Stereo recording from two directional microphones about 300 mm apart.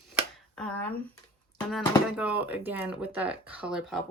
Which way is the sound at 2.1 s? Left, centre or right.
Centre.